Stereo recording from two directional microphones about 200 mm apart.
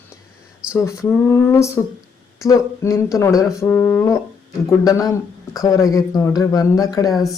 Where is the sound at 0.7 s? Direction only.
15° left (ahead or behind).